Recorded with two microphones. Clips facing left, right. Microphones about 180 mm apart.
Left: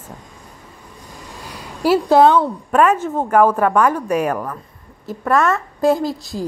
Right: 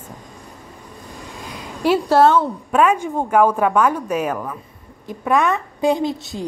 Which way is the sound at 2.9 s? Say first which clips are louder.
Left 1 dB; 5° left (ahead or behind).